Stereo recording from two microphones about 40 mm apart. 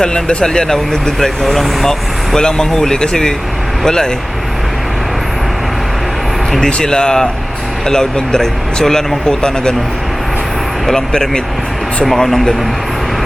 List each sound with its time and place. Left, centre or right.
0.0 s speech: left
6.6 s speech: left
10.9 s speech: centre